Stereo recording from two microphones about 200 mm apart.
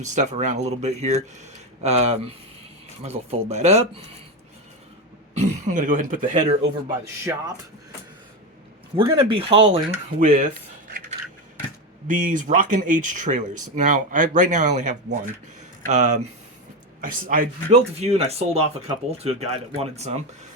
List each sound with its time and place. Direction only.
0.0 s speech: 35° right (ahead or behind)
5.3 s speech: 35° right (ahead or behind)
7.3 s speech: 10° right (ahead or behind)
9.0 s speech: 25° right (ahead or behind)
10.2 s speech: 40° right (ahead or behind)
12.0 s speech: 40° right (ahead or behind)